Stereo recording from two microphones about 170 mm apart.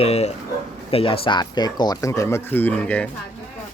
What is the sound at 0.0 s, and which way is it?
Speech, 40° left (ahead or behind).